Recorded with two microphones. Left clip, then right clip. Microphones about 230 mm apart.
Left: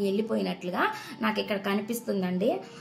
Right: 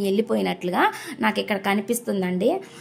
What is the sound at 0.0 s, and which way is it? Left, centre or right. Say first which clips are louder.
A woman's voice: right 6 dB; right.